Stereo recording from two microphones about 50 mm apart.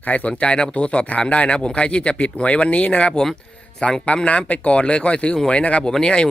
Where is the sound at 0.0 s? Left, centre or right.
Left.